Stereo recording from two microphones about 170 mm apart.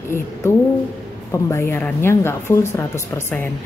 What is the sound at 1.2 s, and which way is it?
Speech, 15° left (ahead or behind).